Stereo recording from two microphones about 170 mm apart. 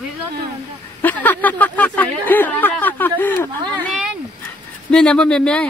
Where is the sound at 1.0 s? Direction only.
10° left (ahead or behind).